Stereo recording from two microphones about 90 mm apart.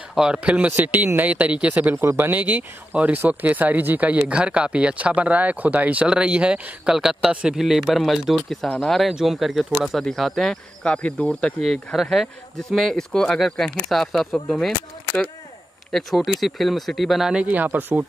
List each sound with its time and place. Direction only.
0.1 s speech: 10° right (ahead or behind); by 11.5 s 15° left (ahead or behind)
11.6 s speech: centre (ahead or behind)
15.9 s speech: centre (ahead or behind); by 18.0 s 20° right (ahead or behind)